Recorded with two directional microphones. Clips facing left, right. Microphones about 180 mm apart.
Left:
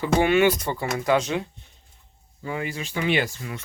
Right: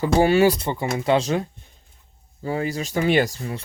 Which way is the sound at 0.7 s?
20° right (ahead or behind).